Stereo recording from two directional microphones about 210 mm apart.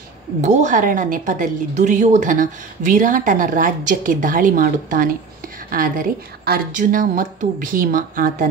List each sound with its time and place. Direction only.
0.4 s a woman's voice: 35° right (ahead or behind)